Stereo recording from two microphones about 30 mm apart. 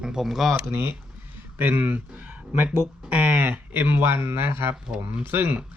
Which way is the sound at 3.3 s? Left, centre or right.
Right.